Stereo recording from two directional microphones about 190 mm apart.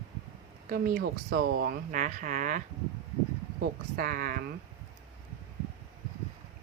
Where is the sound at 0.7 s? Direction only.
50° right (ahead or behind).